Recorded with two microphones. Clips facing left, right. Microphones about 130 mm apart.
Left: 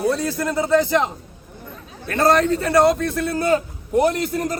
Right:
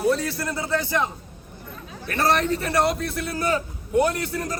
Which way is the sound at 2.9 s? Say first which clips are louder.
Left 6 dB; 25° left (ahead or behind).